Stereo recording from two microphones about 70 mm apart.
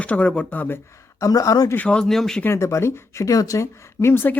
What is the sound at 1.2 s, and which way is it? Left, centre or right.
Speech, left.